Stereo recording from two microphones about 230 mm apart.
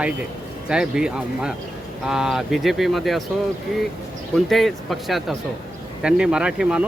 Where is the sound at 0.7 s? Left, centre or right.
Centre.